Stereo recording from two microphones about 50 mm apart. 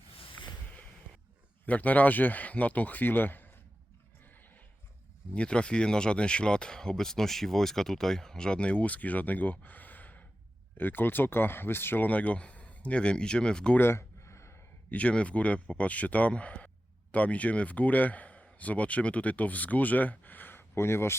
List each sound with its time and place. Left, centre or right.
1.6 s speech: left
5.3 s speech: left
12.0 s speech: left
13.7 s a sound: left
14.8 s speech: left
20.7 s speech: left